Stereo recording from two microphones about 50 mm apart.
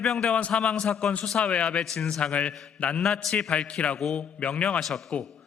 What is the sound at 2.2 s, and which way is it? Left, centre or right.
A man's voice, left.